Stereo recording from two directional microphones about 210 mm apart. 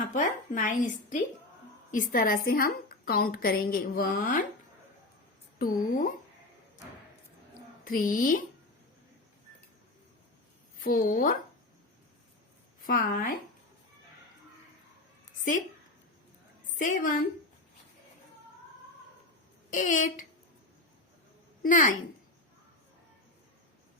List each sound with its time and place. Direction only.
0.0 s a woman's voice: 40° left (ahead or behind)
5.5 s speech: 40° left (ahead or behind)
7.9 s speech: 40° left (ahead or behind)
10.8 s speech: 40° left (ahead or behind)
12.8 s speech: 40° left (ahead or behind)
16.7 s a woman's voice: 40° left (ahead or behind)
19.7 s speech: 40° left (ahead or behind)
21.6 s a woman's voice: 40° left (ahead or behind)